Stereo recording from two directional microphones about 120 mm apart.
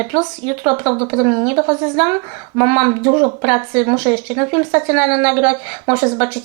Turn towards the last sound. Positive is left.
turn(degrees=-25)  # may be behind; listen again after turning